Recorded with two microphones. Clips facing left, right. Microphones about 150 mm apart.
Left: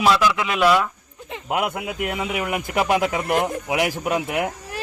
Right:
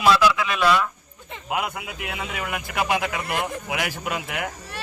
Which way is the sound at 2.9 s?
35° left (ahead or behind).